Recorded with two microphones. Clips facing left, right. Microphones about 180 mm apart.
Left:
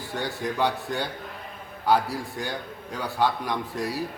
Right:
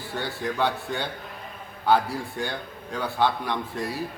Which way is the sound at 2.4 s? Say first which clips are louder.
Right 1 dB; 10° left (ahead or behind).